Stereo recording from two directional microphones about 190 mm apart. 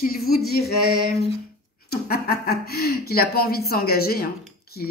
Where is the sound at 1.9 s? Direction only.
55° left (ahead or behind).